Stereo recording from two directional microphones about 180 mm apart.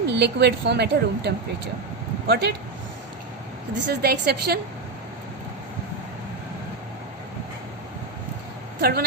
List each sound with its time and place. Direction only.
0.0 s a woman's voice: 70° right (ahead or behind)
3.8 s a woman's voice: 60° right (ahead or behind)
8.8 s a woman's voice: 60° right (ahead or behind)